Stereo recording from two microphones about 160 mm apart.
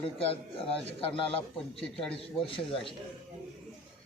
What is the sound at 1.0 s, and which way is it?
Speech, 35° left (ahead or behind).